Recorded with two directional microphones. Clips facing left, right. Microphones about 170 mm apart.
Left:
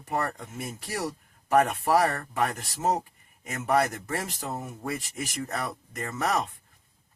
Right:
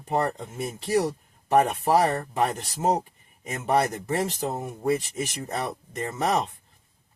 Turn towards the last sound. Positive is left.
turn(degrees=-25)  # may be behind; listen again after turning